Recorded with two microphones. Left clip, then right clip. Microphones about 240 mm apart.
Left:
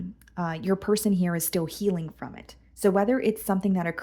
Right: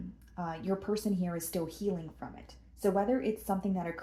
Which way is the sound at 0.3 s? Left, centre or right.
Left.